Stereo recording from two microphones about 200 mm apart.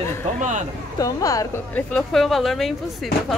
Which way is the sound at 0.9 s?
15° left (ahead or behind).